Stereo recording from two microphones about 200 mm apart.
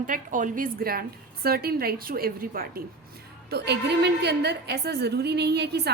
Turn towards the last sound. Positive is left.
turn(degrees=-55)  # may be behind; listen again after turning